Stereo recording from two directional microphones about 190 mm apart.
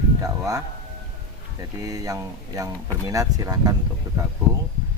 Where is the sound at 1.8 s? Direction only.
20° right (ahead or behind).